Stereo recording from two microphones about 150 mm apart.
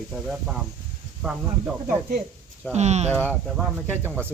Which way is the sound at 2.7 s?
50° right (ahead or behind).